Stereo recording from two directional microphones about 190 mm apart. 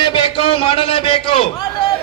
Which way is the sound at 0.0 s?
25° left (ahead or behind).